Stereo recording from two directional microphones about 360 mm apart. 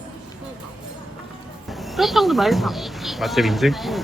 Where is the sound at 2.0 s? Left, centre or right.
Centre.